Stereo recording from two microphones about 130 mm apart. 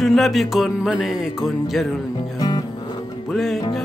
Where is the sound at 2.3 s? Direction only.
30° left (ahead or behind).